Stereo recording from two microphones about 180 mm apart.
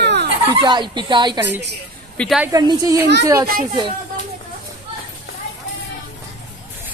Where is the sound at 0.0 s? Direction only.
70° right (ahead or behind).